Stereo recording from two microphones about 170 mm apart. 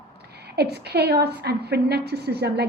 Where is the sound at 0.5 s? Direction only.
75° right (ahead or behind).